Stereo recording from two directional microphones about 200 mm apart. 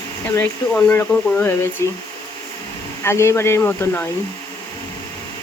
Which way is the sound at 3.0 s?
15° left (ahead or behind).